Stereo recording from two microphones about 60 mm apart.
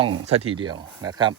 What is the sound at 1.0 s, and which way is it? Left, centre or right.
Speech, right.